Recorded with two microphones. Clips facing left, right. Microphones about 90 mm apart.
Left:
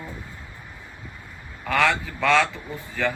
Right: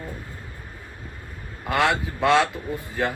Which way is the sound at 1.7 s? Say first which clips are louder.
Even; 20° right (ahead or behind).